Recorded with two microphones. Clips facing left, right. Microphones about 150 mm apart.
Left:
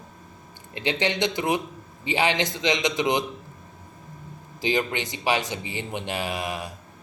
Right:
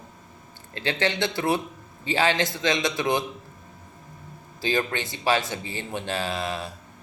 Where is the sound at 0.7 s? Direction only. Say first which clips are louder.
Left 1 dB; 15° left (ahead or behind).